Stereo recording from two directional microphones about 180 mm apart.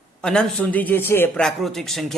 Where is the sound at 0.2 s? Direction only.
5° left (ahead or behind).